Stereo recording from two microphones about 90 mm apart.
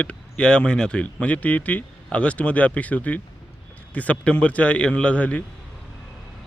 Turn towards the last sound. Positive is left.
turn(degrees=15)  # may be behind; listen again after turning